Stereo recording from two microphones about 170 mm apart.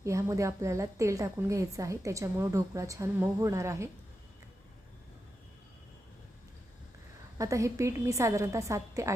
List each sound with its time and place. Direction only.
0.0 s a woman's voice: 20° right (ahead or behind)
7.3 s a woman's voice: 20° right (ahead or behind)